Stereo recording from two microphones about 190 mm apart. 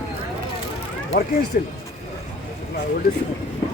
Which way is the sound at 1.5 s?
45° left (ahead or behind).